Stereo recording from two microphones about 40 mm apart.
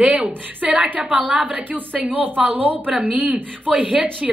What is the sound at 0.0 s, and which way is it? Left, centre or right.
A woman's voice, right.